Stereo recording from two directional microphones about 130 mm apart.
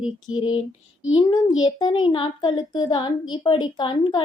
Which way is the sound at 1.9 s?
40° left (ahead or behind).